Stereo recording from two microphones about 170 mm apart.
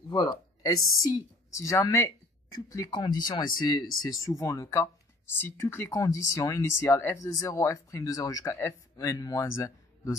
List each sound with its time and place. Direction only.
0.1 s speech: 20° left (ahead or behind)